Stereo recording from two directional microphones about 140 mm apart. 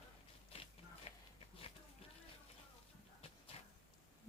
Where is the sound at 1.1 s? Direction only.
50° left (ahead or behind).